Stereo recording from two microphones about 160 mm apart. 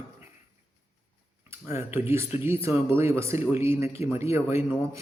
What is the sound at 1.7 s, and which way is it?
Speech, 15° right (ahead or behind).